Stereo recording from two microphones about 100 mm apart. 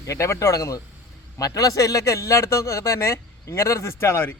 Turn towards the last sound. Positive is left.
turn(degrees=25)  # may be behind; listen again after turning